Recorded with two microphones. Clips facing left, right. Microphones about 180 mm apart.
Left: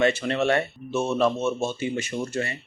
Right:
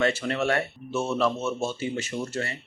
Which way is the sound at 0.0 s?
20° left (ahead or behind).